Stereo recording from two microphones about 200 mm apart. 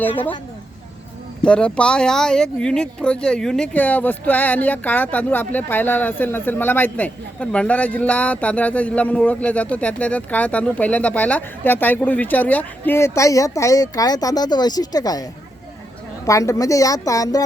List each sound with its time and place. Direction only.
1.4 s speech: 5° left (ahead or behind)